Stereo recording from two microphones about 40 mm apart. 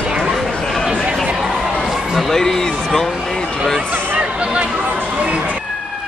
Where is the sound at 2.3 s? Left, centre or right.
Centre.